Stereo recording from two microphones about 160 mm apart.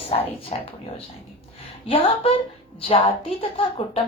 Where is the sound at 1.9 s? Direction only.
40° left (ahead or behind).